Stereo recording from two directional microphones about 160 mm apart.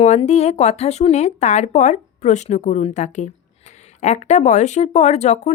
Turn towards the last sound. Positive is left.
turn(degrees=45)  # may be behind; listen again after turning